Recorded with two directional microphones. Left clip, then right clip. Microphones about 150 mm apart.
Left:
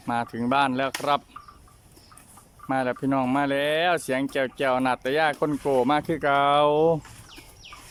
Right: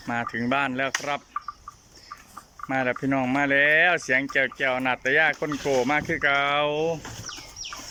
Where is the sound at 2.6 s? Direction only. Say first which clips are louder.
Even; 20° left (ahead or behind).